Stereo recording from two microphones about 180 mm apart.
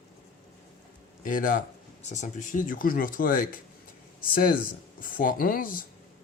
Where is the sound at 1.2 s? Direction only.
50° left (ahead or behind).